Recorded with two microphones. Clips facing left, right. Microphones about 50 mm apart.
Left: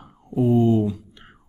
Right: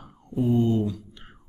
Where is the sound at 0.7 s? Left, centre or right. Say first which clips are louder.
Left 4 dB; centre.